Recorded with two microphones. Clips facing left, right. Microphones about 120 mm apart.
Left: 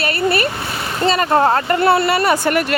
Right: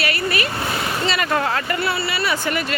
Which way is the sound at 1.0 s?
40° left (ahead or behind).